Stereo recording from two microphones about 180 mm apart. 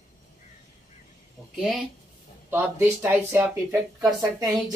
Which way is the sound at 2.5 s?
10° right (ahead or behind).